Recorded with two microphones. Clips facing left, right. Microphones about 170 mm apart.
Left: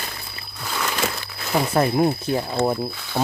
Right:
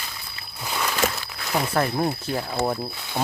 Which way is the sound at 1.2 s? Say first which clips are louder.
Left 3 dB; 20° left (ahead or behind).